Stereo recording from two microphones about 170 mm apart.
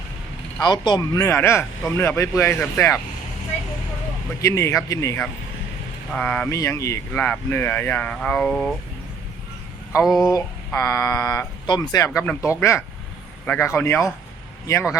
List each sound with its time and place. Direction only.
0.6 s speech: 25° left (ahead or behind)
4.4 s speech: 15° left (ahead or behind)
10.1 s speech: centre (ahead or behind)
10.3 s speech: 15° left (ahead or behind)